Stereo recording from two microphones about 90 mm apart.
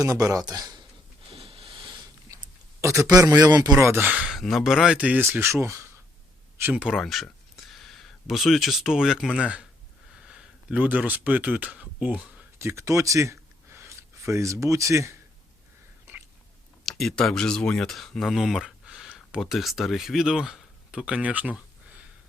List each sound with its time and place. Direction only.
0.0 s speech: 40° right (ahead or behind)
1.3 s a sound: 90° right; by 2.0 s 75° right (ahead or behind)
2.8 s a man's voice: 35° right (ahead or behind)
3.8 s speech: 30° right (ahead or behind)
4.0 s speech: 15° right (ahead or behind)
4.3 s speech: centre (ahead or behind)
4.9 s speech: 15° right (ahead or behind)
6.7 s speech: 10° right (ahead or behind)
12.5 s speech: 30° right (ahead or behind)
17.0 s speech: 5° left (ahead or behind); by 22.0 s 15° right (ahead or behind)